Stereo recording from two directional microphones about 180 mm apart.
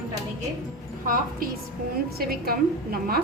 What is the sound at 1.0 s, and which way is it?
A woman's voice, 50° right (ahead or behind).